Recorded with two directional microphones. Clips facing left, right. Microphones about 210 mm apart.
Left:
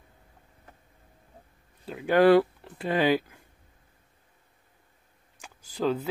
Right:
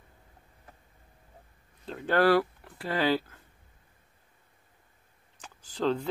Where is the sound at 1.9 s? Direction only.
10° left (ahead or behind).